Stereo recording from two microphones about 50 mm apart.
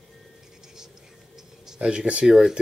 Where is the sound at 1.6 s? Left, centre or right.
Centre.